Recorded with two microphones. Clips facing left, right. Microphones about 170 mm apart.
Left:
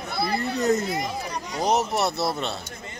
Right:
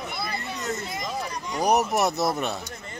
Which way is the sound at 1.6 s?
15° right (ahead or behind).